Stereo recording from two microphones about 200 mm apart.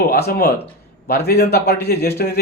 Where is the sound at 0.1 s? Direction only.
50° left (ahead or behind).